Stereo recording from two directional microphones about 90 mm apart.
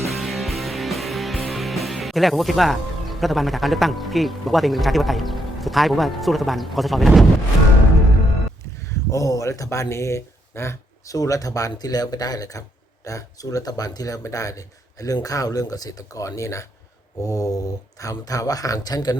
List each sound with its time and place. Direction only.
0.1 s music: centre (ahead or behind)
9.0 s speech: 35° left (ahead or behind)